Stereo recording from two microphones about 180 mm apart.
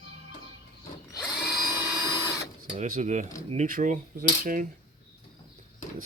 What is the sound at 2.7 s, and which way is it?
Speech, 40° right (ahead or behind).